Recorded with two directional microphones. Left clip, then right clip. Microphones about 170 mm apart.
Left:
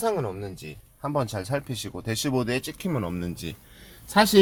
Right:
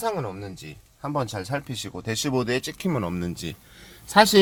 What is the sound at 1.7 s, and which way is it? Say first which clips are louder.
Speech: right 1 dB; 10° right (ahead or behind).